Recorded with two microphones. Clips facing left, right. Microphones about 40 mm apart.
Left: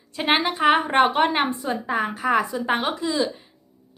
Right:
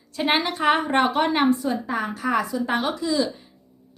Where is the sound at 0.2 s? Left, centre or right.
Centre.